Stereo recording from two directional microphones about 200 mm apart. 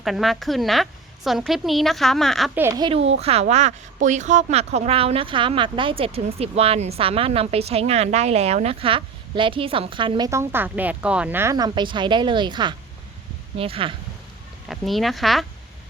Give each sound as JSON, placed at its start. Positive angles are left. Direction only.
{"t": 0.0, "sound": "a woman's voice", "side_deg": 0}
{"t": 2.6, "sound": "speech", "side_deg": -15}
{"t": 3.2, "sound": "speech", "side_deg": -30}
{"t": 14.7, "sound": "a woman's voice", "side_deg": 0}